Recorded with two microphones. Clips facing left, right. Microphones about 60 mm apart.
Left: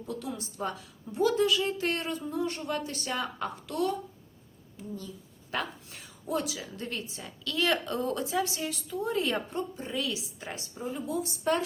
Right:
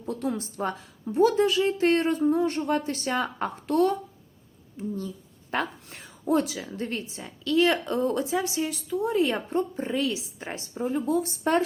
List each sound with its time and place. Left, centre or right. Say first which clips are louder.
0.1 s a woman's voice: right 8 dB; right
6.7 s a woman's voice: right 5 dB; right
9.5 s a woman's voice: right 7 dB; right
10.8 s speech: right 7 dB; right